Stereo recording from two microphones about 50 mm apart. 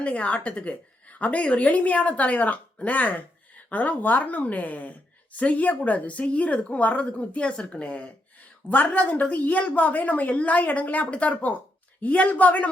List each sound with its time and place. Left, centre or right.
0.0 s a woman's voice: left